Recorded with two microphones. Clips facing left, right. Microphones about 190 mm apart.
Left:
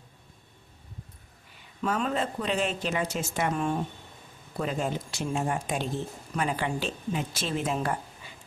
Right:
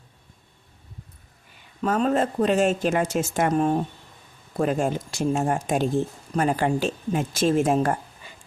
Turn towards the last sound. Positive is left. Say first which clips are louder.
# right 8 dB
turn(degrees=-45)  # may be behind; listen again after turning